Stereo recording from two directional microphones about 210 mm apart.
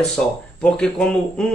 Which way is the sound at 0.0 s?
5° left (ahead or behind).